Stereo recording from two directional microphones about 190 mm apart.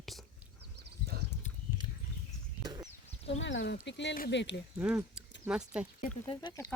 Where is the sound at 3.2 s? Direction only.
75° left (ahead or behind).